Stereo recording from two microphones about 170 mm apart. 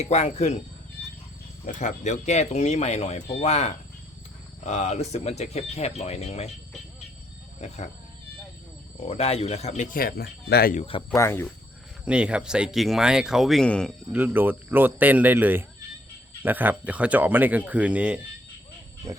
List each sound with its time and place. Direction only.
0.0 s speech: 40° left (ahead or behind)
1.6 s speech: 45° left (ahead or behind)
7.6 s speech: 45° left (ahead or behind)
9.0 s speech: 35° left (ahead or behind); by 10.8 s 65° left (ahead or behind)
10.8 s speech: 30° left (ahead or behind)
11.1 s speech: 15° left (ahead or behind)
12.0 s speech: 5° right (ahead or behind)
14.1 s speech: 10° right (ahead or behind)